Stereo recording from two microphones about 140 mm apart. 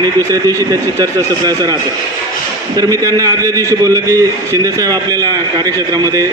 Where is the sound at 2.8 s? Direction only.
25° right (ahead or behind).